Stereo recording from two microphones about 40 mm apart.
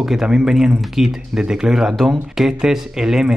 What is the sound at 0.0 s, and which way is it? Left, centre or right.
Speech, centre.